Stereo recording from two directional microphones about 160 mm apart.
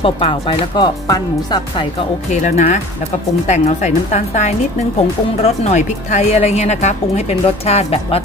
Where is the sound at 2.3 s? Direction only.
50° left (ahead or behind).